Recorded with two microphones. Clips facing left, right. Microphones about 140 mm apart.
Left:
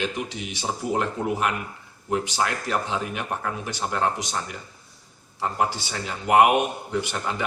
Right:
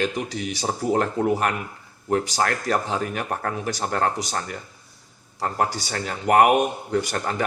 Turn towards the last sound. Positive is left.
turn(degrees=-45)  # may be behind; listen again after turning